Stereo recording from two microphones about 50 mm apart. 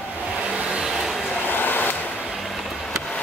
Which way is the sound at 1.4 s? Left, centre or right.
Left.